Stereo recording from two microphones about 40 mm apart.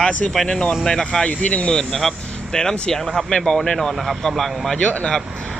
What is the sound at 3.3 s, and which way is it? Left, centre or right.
Speech, left.